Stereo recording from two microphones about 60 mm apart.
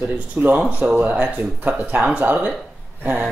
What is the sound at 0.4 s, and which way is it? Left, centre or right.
Speech, right.